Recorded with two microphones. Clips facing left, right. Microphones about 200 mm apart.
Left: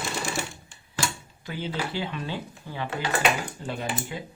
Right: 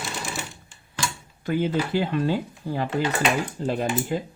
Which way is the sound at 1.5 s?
50° right (ahead or behind).